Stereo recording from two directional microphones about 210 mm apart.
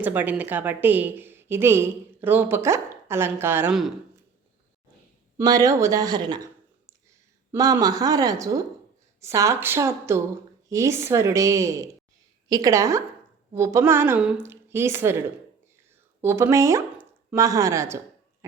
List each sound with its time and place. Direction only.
0.0 s a woman's voice: 10° right (ahead or behind)
5.4 s a woman's voice: 15° right (ahead or behind)
16.2 s speech: 10° right (ahead or behind)